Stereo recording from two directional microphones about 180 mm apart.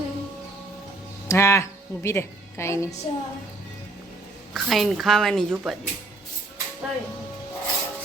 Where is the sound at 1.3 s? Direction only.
15° left (ahead or behind).